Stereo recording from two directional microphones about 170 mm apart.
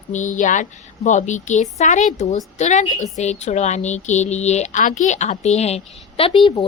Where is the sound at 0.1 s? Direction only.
45° left (ahead or behind).